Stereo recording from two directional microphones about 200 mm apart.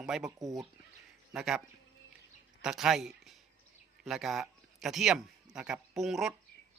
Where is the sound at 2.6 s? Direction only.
Centre (ahead or behind).